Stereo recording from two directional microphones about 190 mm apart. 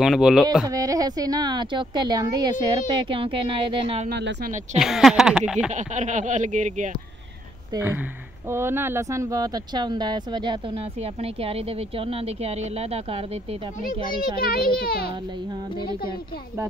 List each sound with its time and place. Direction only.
0.0 s speech: centre (ahead or behind)
0.7 s speech: 20° right (ahead or behind)
4.1 s speech: 65° right (ahead or behind)
4.7 s speech: centre (ahead or behind)
5.7 s speech: 40° right (ahead or behind)
7.7 s speech: 10° right (ahead or behind); by 14.0 s 30° right (ahead or behind)
14.4 s a child's voice: 50° left (ahead or behind)